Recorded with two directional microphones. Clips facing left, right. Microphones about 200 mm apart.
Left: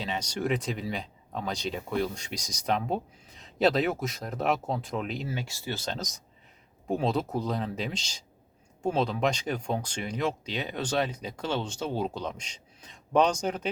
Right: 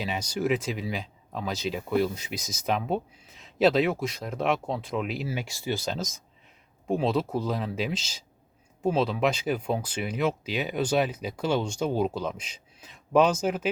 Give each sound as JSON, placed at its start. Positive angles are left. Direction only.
{"t": 0.0, "sound": "speech", "side_deg": -10}